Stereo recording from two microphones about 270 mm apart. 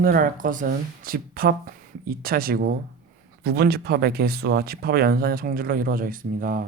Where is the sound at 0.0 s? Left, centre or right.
Right.